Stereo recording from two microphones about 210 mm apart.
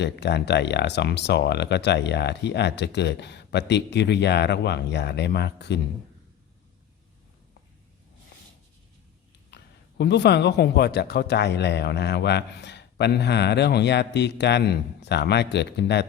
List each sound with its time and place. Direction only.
0.0 s speech: 55° left (ahead or behind)
9.5 s a sound: 55° left (ahead or behind)
10.0 s speech: 55° left (ahead or behind)